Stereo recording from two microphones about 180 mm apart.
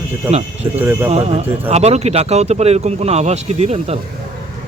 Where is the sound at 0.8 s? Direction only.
10° right (ahead or behind).